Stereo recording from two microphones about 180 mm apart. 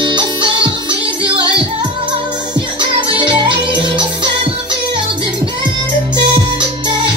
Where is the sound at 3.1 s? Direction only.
30° right (ahead or behind).